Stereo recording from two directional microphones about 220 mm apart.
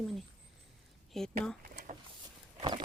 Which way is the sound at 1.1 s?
Centre (ahead or behind).